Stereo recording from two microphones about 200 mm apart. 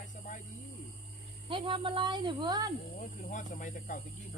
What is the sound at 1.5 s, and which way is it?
Speech, 25° right (ahead or behind).